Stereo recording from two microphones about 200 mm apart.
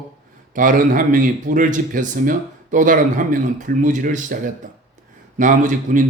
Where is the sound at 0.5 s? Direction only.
40° right (ahead or behind).